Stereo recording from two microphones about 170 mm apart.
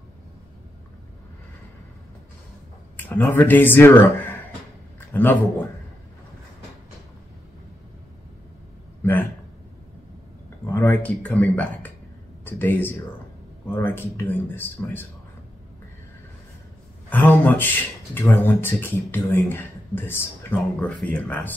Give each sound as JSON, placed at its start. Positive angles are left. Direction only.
{"t": 3.0, "sound": "a man's voice", "side_deg": 10}
{"t": 10.7, "sound": "speech", "side_deg": 10}
{"t": 17.1, "sound": "speech", "side_deg": 10}